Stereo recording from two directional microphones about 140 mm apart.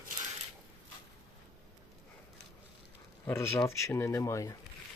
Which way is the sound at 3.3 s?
20° left (ahead or behind).